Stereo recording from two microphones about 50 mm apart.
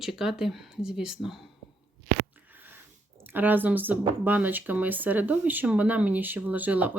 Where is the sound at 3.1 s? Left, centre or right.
Right.